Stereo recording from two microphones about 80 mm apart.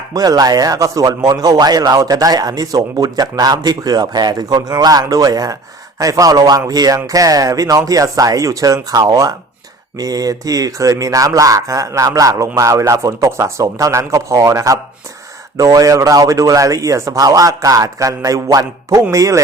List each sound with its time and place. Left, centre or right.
0.1 s speech: right
1.3 s a man's voice: right